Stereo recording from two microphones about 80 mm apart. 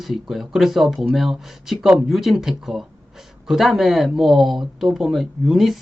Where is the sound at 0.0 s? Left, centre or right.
Centre.